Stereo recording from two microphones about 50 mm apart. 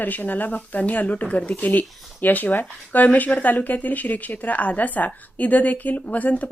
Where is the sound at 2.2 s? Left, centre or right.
Left.